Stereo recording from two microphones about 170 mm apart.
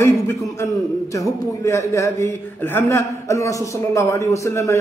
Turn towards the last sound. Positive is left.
turn(degrees=15)  # may be behind; listen again after turning